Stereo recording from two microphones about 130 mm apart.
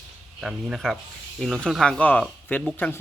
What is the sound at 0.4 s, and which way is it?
Speech, centre (ahead or behind).